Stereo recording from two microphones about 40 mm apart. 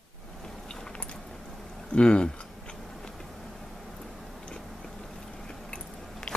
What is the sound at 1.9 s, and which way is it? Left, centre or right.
Speech, left.